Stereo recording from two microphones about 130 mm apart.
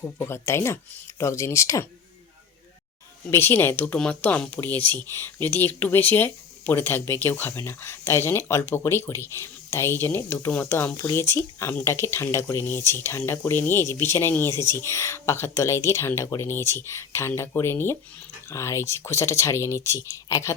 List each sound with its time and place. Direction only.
0.0 s speech: 20° left (ahead or behind)
3.2 s speech: 15° left (ahead or behind)